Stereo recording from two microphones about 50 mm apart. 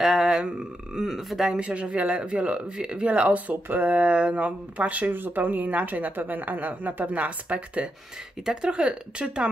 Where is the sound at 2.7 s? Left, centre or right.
Centre.